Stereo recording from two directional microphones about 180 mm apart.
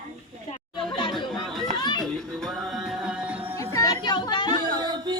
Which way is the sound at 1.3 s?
Centre (ahead or behind).